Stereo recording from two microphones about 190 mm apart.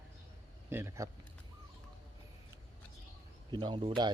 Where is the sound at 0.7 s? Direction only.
15° right (ahead or behind).